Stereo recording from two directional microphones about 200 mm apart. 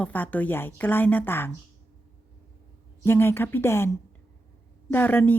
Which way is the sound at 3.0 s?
10° left (ahead or behind).